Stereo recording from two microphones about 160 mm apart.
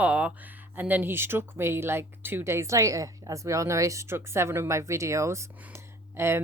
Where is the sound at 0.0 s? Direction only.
10° right (ahead or behind).